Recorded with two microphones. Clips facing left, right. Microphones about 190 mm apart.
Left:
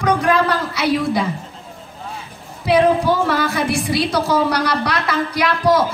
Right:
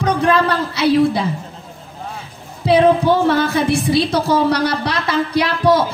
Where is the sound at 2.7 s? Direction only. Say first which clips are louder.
Right 2 dB; 25° right (ahead or behind).